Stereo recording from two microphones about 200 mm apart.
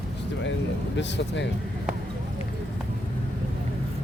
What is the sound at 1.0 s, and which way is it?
Speech, 60° left (ahead or behind).